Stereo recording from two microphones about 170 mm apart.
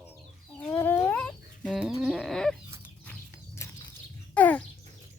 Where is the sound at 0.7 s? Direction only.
10° left (ahead or behind).